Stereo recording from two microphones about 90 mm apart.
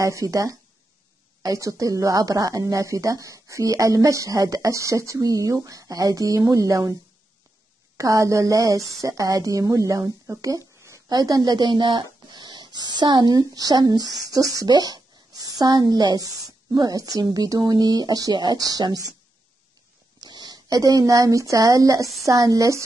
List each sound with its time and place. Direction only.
0.0 s a woman's voice: 35° right (ahead or behind)
8.0 s a woman's voice: 35° right (ahead or behind)
11.1 s a woman's voice: 50° right (ahead or behind)
16.2 s a woman's voice: 40° right (ahead or behind)
18.3 s speech: 55° right (ahead or behind)
20.2 s a woman's voice: 50° right (ahead or behind); by 22.8 s 35° right (ahead or behind)